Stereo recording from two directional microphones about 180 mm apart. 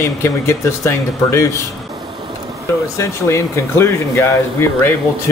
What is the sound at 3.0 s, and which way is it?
Speech, 15° left (ahead or behind).